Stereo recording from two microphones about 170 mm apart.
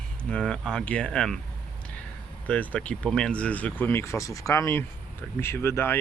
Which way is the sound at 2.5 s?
5° left (ahead or behind).